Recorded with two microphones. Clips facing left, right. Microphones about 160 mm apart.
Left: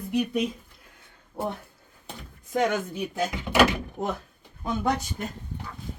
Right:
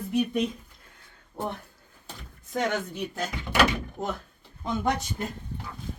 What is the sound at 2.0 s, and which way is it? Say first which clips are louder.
Speech: left 3 dB; 10° left (ahead or behind).